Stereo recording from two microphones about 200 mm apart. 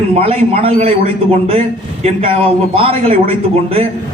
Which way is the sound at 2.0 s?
30° right (ahead or behind).